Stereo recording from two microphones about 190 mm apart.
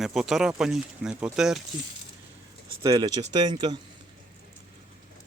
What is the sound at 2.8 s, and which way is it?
Speech, 20° right (ahead or behind).